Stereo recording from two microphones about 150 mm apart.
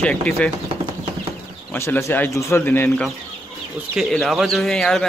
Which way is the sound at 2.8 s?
5° left (ahead or behind).